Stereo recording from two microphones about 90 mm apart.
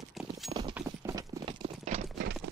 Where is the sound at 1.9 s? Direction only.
90° right.